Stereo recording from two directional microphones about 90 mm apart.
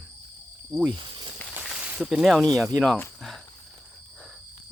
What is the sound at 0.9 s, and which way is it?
Speech, 65° right (ahead or behind).